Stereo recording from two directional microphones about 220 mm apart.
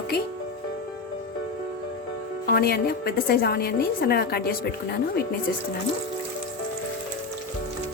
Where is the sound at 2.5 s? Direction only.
45° left (ahead or behind).